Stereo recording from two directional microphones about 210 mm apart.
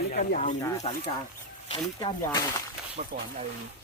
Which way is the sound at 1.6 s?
25° left (ahead or behind).